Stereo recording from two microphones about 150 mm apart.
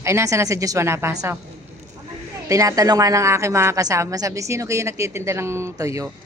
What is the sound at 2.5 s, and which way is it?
A woman's voice, 20° right (ahead or behind).